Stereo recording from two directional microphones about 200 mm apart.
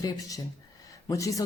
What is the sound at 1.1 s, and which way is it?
Speech, 15° left (ahead or behind).